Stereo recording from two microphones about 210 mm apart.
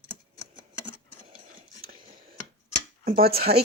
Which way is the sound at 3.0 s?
45° right (ahead or behind).